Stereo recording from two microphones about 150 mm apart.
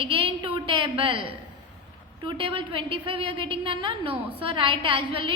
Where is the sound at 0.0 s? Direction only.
35° right (ahead or behind).